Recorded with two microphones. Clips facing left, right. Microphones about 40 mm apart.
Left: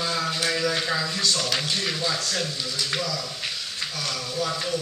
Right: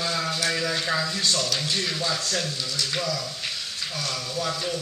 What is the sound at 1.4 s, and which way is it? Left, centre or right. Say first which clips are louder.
Speech: left 1 dB; centre.